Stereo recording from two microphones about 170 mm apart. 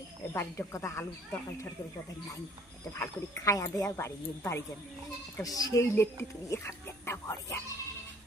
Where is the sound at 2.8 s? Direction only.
20° left (ahead or behind).